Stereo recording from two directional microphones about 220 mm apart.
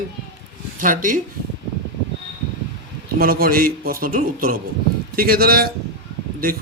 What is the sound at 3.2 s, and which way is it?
Speech, 40° right (ahead or behind).